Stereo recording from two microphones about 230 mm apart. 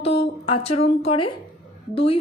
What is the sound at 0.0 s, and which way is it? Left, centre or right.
A woman's voice, left.